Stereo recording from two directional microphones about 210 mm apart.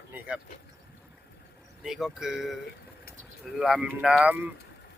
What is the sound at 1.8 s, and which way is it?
Speech, centre (ahead or behind).